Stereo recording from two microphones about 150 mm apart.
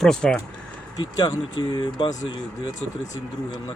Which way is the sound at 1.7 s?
30° left (ahead or behind).